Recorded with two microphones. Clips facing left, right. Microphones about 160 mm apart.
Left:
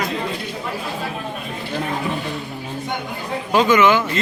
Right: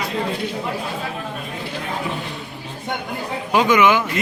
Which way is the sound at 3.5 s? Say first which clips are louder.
Left 1 dB; 15° right (ahead or behind).